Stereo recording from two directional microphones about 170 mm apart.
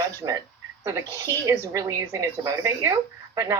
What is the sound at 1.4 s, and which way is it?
A woman's voice, 20° right (ahead or behind).